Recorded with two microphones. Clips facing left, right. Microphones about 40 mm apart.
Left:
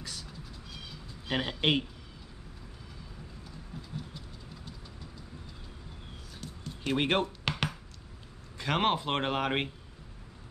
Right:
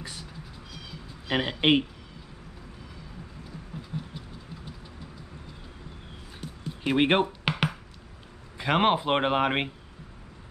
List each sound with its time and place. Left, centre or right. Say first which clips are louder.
0.0 s cat: right 3 dB; right
1.2 s speech: right 5 dB; right
3.9 s train: right 5 dB; right
6.4 s a sound: right 5 dB; centre
8.5 s speech: right 5 dB; centre